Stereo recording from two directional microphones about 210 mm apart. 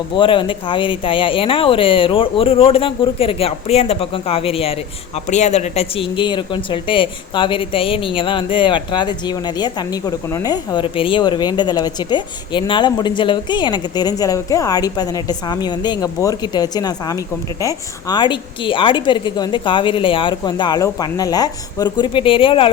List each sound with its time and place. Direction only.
0.1 s speech: 25° left (ahead or behind)